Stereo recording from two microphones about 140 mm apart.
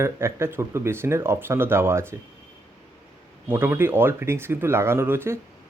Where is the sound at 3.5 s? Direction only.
15° right (ahead or behind).